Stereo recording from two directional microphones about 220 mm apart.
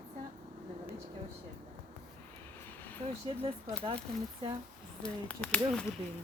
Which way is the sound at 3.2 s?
25° right (ahead or behind).